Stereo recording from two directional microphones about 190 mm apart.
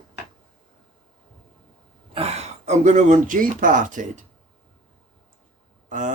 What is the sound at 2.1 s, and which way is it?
Speech, 30° right (ahead or behind).